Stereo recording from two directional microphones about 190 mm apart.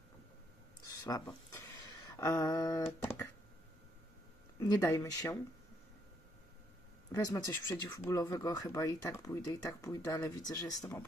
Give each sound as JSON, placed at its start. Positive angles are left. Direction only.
{"t": 0.8, "sound": "a sound", "side_deg": 20}
{"t": 2.1, "sound": "speech", "side_deg": 15}
{"t": 4.6, "sound": "speech", "side_deg": 15}
{"t": 7.1, "sound": "speech", "side_deg": 20}